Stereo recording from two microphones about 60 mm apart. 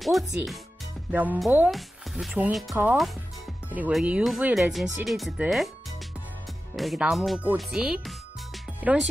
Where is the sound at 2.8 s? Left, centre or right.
Right.